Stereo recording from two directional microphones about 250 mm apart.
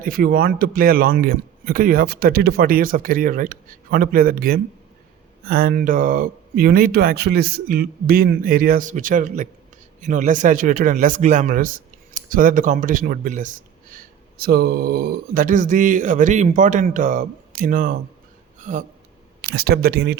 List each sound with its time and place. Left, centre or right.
0.0 s speech: right
18.6 s a sound: right
19.4 s speech: right